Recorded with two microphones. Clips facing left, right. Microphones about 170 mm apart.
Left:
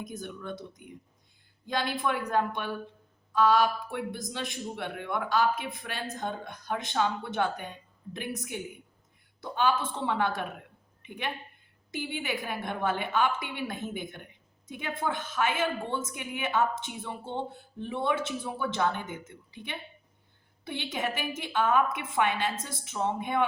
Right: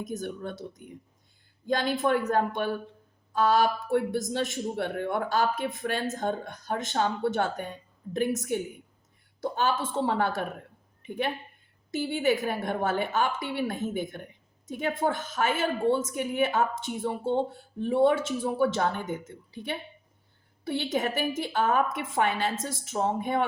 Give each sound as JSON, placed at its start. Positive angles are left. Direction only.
{"t": 0.0, "sound": "a man's voice", "side_deg": -45}